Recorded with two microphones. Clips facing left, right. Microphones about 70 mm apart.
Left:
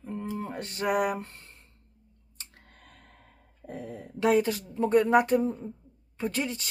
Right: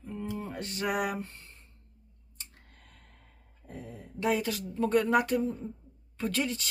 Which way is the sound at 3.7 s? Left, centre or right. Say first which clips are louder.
Left 5 dB; left.